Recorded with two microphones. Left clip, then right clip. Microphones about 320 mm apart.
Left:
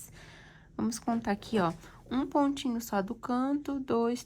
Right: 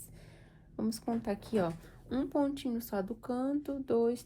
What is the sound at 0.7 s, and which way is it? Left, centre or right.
Speech, left.